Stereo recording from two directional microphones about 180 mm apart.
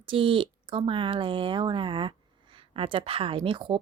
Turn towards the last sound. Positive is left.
turn(degrees=-30)  # may be behind; listen again after turning